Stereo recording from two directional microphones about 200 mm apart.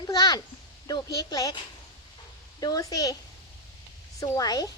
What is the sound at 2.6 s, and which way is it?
Speech, 20° left (ahead or behind).